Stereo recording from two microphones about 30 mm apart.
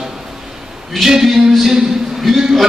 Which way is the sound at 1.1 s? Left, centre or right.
Centre.